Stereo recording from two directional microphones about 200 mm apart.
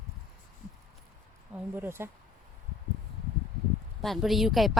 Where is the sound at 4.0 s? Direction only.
Centre (ahead or behind).